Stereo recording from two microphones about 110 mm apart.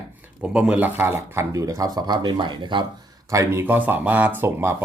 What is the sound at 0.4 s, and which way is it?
Speech, 10° right (ahead or behind).